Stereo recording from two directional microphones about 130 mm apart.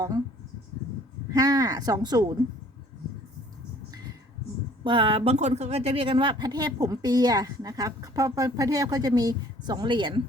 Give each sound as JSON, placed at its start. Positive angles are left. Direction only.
{"t": 1.3, "sound": "speech", "side_deg": -30}
{"t": 4.8, "sound": "speech", "side_deg": -40}